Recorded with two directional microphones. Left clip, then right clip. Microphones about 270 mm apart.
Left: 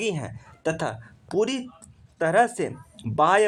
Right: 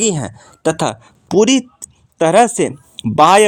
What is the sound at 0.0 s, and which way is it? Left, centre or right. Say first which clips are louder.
Speech: right 10 dB; right.